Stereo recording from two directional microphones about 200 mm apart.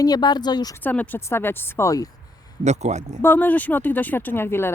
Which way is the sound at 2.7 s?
35° right (ahead or behind).